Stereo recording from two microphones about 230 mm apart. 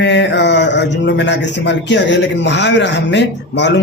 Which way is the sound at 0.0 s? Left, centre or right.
Left.